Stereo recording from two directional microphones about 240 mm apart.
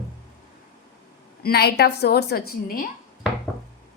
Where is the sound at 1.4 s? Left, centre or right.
Left.